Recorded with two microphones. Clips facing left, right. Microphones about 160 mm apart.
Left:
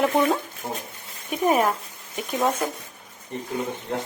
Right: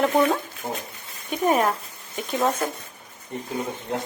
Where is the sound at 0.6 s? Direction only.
15° right (ahead or behind).